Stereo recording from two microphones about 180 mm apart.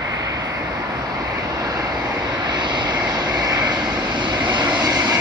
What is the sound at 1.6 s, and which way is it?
Vehicle, 20° right (ahead or behind).